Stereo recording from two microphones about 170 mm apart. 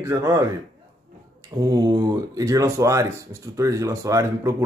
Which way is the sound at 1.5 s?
20° right (ahead or behind).